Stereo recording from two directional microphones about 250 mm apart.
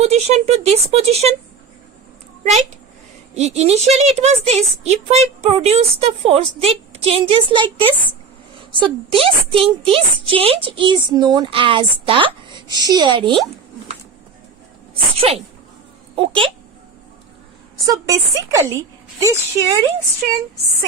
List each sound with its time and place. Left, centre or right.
0.0 s a woman's voice: right
2.4 s a child's voice: right
15.2 s a woman's voice: right
17.8 s speech: centre